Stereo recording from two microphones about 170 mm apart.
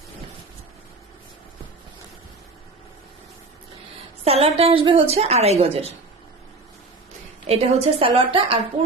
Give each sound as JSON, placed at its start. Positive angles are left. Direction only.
{"t": 4.2, "sound": "a woman's voice", "side_deg": -40}
{"t": 7.4, "sound": "a woman's voice", "side_deg": -35}